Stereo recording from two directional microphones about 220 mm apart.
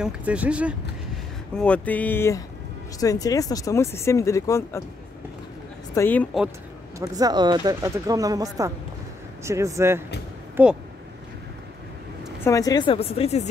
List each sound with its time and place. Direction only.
0.0 s speech: 5° right (ahead or behind)
1.5 s speech: 5° left (ahead or behind)
5.9 s speech: 10° left (ahead or behind)
7.0 s speech: 15° right (ahead or behind)
12.4 s speech: 15° left (ahead or behind)